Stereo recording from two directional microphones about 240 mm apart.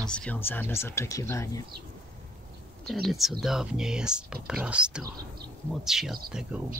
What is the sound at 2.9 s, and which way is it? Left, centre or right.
Speech, centre.